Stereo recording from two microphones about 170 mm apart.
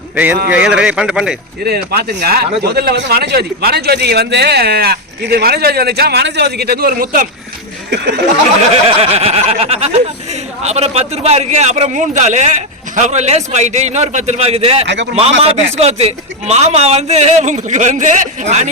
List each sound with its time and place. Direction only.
0.5 s speech: 5° right (ahead or behind)
1.6 s speech: 70° right (ahead or behind)
8.7 s a man's voice: 35° right (ahead or behind)